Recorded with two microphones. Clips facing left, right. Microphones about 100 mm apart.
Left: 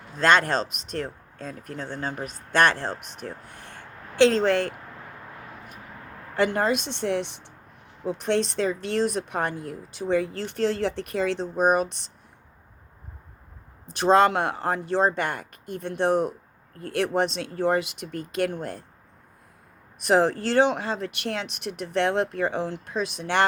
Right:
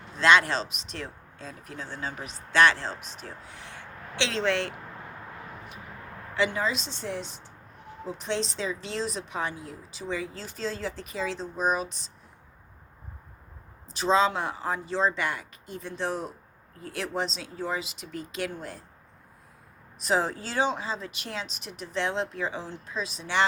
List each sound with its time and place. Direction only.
0.2 s speech: 50° left (ahead or behind)
6.3 s speech: 55° left (ahead or behind)
13.9 s speech: 60° left (ahead or behind)
20.0 s speech: 60° left (ahead or behind)